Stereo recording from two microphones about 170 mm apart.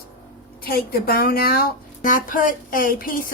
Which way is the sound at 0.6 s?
60° left (ahead or behind).